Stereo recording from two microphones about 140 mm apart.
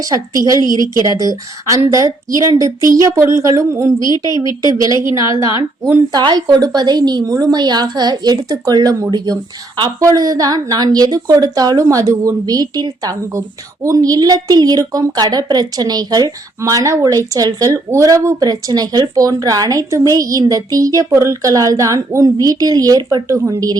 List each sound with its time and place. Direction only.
0.0 s a woman's voice: 25° right (ahead or behind)
0.7 s a woman's voice: 30° left (ahead or behind)
1.0 s a woman's voice: 25° right (ahead or behind)